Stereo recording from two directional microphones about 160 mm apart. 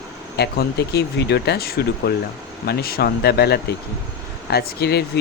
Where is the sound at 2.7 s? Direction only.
75° left (ahead or behind).